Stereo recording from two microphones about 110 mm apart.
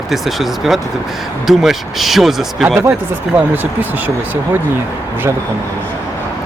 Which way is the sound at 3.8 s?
15° right (ahead or behind).